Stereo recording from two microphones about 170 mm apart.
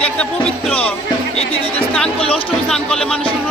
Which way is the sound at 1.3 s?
35° left (ahead or behind).